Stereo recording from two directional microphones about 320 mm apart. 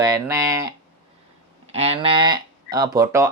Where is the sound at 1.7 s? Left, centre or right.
Centre.